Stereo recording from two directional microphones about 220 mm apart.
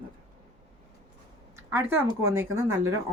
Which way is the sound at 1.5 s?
15° right (ahead or behind).